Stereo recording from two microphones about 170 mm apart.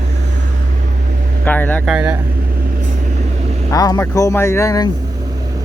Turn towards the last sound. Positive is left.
turn(degrees=20)  # may be behind; listen again after turning